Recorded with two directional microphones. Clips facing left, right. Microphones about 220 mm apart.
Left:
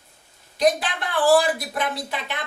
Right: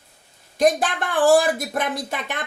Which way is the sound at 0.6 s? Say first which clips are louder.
Right 2 dB; 50° right (ahead or behind).